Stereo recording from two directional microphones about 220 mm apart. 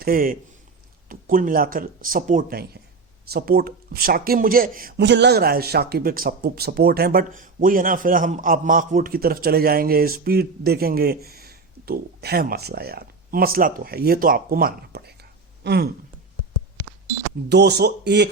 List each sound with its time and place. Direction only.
0.0 s speech: 40° right (ahead or behind)
17.5 s speech: 50° right (ahead or behind)